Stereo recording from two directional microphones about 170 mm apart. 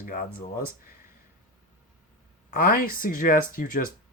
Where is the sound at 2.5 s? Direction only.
55° left (ahead or behind).